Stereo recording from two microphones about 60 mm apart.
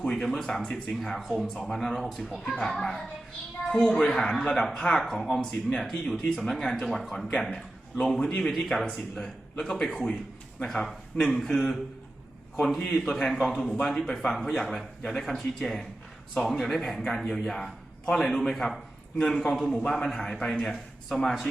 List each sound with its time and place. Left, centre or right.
0.1 s a man's voice: centre
0.6 s speech: centre
0.9 s a man's voice: centre
12.9 s a man's voice: centre
13.4 s a man's voice: centre